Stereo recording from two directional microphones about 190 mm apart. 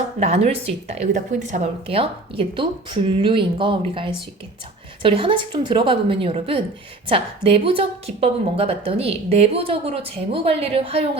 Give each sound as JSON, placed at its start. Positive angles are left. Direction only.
{"t": 0.2, "sound": "a woman's voice", "side_deg": -35}